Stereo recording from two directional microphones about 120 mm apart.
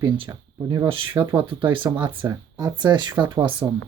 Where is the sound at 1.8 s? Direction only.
30° right (ahead or behind).